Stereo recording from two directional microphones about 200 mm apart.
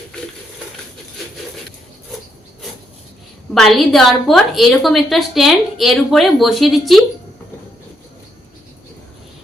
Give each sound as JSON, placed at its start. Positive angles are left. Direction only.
{"t": 3.5, "sound": "a woman's voice", "side_deg": 0}